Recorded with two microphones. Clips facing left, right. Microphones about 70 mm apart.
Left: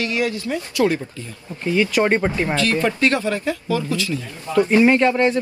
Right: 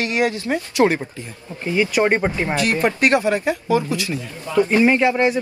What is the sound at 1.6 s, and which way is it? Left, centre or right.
Speech, centre.